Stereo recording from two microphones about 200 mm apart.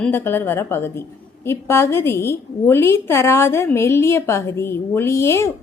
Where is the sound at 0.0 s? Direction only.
10° left (ahead or behind).